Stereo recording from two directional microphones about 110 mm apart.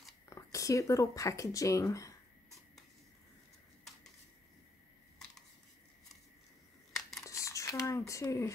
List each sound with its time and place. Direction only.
0.3 s speech: 30° left (ahead or behind)
6.9 s crumpling: centre (ahead or behind)
7.2 s a sound: 30° left (ahead or behind)